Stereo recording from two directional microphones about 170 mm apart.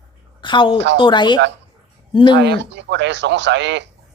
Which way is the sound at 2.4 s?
90° right.